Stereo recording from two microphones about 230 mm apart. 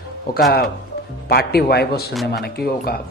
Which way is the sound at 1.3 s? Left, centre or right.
Left.